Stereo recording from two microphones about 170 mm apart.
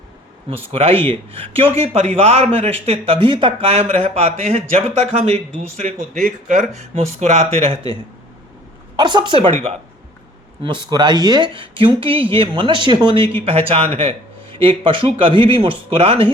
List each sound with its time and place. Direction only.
0.5 s speech: 35° right (ahead or behind)
9.0 s speech: 25° right (ahead or behind)
10.6 s speech: 30° right (ahead or behind)